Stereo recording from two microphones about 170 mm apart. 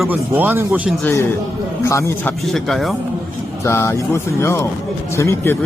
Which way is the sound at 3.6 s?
15° left (ahead or behind).